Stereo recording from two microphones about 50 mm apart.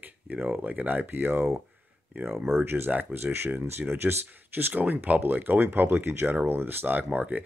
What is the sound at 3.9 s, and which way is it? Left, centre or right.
Speech, right.